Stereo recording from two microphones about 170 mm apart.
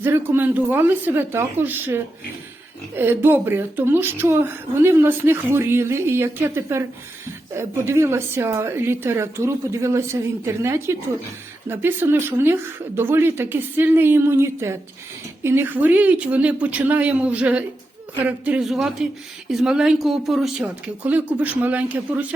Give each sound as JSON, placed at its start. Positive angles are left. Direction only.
{"t": 0.0, "sound": "speech", "side_deg": -10}